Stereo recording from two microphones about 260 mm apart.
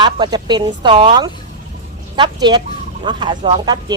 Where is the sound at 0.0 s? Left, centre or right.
Centre.